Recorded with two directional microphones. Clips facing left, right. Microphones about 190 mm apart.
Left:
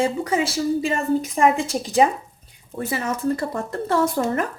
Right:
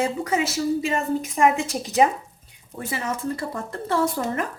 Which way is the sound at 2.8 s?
40° left (ahead or behind).